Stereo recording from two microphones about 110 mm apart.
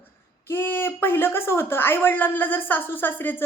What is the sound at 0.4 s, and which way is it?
Speech, 20° left (ahead or behind).